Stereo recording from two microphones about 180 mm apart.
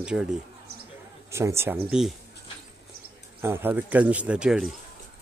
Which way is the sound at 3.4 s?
10° right (ahead or behind).